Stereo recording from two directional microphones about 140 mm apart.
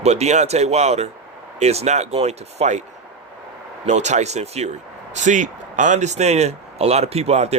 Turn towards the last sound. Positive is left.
turn(degrees=-50)  # may be behind; listen again after turning